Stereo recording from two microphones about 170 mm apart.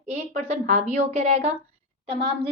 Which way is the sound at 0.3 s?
40° right (ahead or behind).